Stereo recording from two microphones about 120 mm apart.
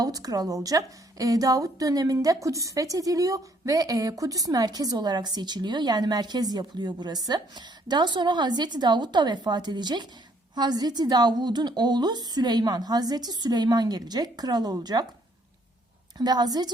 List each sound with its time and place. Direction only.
0.0 s a woman's voice: 30° right (ahead or behind)
16.1 s a woman's voice: 35° right (ahead or behind)